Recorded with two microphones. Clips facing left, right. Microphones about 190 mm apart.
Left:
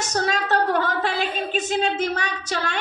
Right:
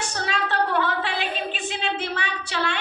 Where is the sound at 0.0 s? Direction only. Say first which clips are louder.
Left 4 dB; 40° left (ahead or behind).